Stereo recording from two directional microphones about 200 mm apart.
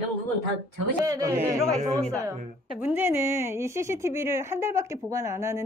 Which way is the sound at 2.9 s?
10° right (ahead or behind).